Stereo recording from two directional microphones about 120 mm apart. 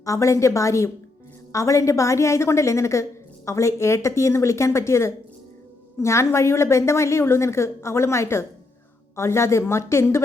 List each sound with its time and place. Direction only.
0.0 s a woman's voice: 25° left (ahead or behind)